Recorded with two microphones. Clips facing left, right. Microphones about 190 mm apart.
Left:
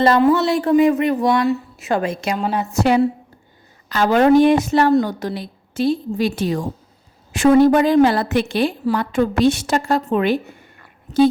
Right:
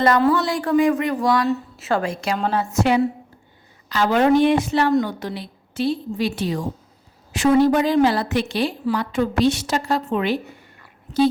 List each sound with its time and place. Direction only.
0.0 s a woman's voice: 25° left (ahead or behind)
2.7 s a woman's voice: 35° left (ahead or behind)